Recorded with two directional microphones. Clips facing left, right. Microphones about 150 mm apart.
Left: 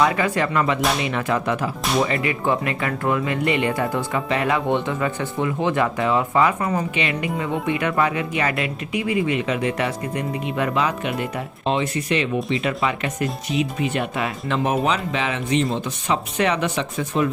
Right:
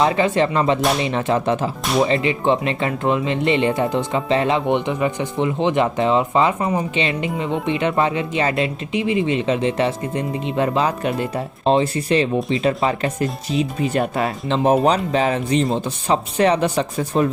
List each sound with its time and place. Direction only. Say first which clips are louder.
0.0 s speech: right 3 dB; 25° right (ahead or behind)